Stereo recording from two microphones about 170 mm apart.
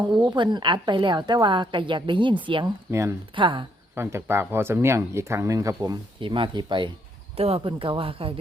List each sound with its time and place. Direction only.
0.0 s a woman's voice: 25° right (ahead or behind)
2.9 s speech: 15° right (ahead or behind)
3.3 s a woman's voice: 30° right (ahead or behind)
3.9 s speech: 15° right (ahead or behind); by 8.4 s 35° right (ahead or behind)